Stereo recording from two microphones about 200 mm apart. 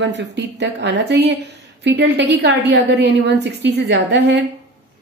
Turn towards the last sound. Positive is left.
turn(degrees=-60)  # may be behind; listen again after turning